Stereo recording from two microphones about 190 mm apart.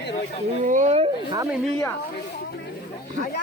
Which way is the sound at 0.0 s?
65° left (ahead or behind).